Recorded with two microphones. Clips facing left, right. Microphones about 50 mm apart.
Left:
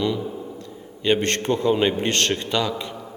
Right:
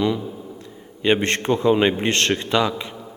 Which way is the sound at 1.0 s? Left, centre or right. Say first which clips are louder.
Right 2 dB; right.